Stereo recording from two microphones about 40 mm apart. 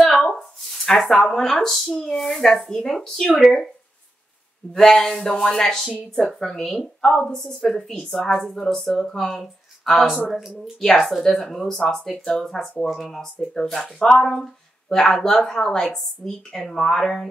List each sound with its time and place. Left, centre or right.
0.4 s a child's voice: centre
4.7 s a child's voice: centre
9.0 s speech: left
9.3 s speech: centre
10.0 s speech: centre
10.6 s a child's voice: centre
16.3 s a child's voice: centre